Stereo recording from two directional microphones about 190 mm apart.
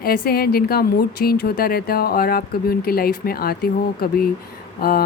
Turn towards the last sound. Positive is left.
turn(degrees=50)  # may be behind; listen again after turning